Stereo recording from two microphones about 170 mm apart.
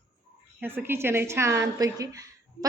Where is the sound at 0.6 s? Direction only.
10° right (ahead or behind).